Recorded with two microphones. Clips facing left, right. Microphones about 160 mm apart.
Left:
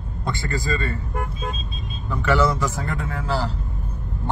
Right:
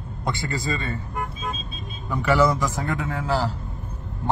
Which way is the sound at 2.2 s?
15° right (ahead or behind).